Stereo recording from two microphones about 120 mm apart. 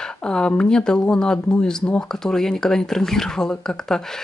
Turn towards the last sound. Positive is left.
turn(degrees=5)  # may be behind; listen again after turning